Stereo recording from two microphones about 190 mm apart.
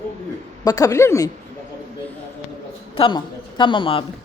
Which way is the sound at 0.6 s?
20° left (ahead or behind).